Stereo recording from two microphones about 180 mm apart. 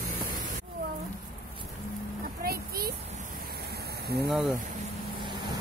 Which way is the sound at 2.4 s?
55° right (ahead or behind).